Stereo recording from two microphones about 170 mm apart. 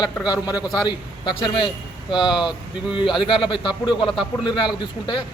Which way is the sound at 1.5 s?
30° left (ahead or behind).